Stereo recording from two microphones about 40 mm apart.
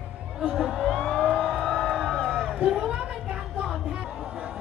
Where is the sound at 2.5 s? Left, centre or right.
Right.